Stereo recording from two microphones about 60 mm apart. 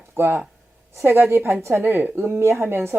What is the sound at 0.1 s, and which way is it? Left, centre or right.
A woman's voice, right.